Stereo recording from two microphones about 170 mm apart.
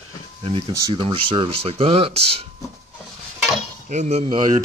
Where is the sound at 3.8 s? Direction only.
40° right (ahead or behind).